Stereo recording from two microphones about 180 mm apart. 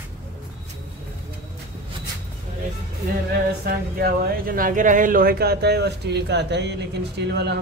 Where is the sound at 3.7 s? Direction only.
55° right (ahead or behind).